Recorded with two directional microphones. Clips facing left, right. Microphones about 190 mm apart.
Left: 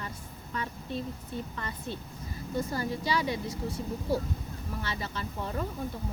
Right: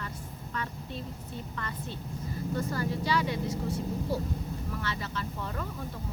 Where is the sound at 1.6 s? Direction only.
15° left (ahead or behind).